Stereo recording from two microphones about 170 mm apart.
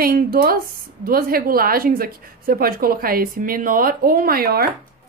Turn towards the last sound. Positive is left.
turn(degrees=-60)  # may be behind; listen again after turning